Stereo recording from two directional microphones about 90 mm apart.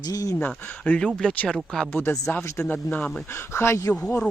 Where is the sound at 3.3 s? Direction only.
30° left (ahead or behind).